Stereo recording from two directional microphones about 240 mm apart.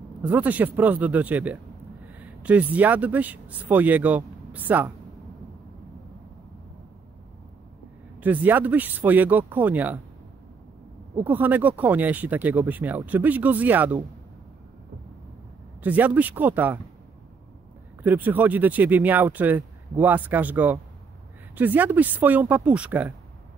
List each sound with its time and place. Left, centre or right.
0.2 s speech: centre
8.2 s speech: centre
11.1 s speech: centre
15.8 s speech: centre
18.0 s speech: centre